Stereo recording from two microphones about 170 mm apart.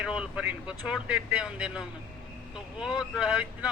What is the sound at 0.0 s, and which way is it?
Speech, 5° right (ahead or behind).